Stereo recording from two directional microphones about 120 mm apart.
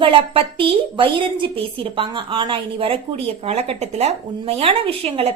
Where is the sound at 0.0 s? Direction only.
45° right (ahead or behind).